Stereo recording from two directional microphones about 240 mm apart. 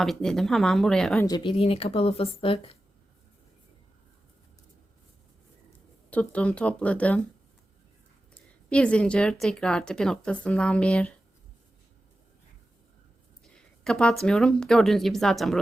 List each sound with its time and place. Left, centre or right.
0.0 s speech: centre
1.3 s speech: left
6.1 s speech: centre
8.4 s speech: centre
13.5 s speech: centre